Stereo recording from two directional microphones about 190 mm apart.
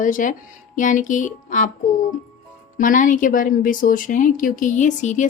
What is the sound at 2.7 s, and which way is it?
A woman's voice, 45° left (ahead or behind).